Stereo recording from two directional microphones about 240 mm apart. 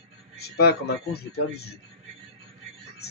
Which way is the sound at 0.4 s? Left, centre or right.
Left.